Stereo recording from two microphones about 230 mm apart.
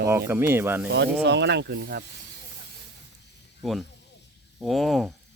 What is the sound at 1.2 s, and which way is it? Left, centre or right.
Speech, right.